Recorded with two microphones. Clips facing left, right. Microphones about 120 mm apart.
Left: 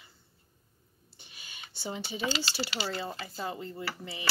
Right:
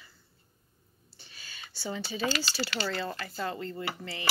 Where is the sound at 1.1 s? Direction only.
20° left (ahead or behind).